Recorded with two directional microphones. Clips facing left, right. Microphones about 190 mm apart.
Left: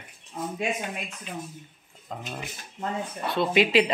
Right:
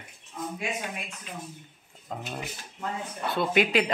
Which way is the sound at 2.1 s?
5° right (ahead or behind).